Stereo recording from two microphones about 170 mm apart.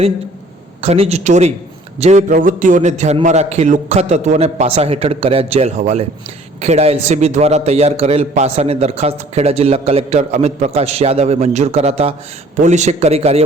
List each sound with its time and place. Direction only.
0.8 s a man's voice: 35° right (ahead or behind)